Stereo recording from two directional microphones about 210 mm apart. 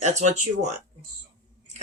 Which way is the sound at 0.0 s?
35° right (ahead or behind).